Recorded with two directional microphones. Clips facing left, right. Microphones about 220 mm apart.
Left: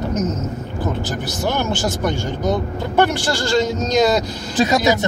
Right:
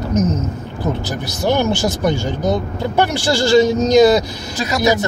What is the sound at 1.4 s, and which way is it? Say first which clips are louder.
Speech: right 5 dB; 15° right (ahead or behind).